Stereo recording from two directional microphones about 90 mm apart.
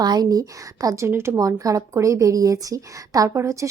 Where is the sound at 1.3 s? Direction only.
40° right (ahead or behind).